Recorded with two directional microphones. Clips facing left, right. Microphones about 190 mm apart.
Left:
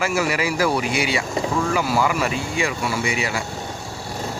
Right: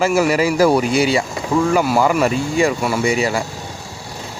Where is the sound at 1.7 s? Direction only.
50° right (ahead or behind).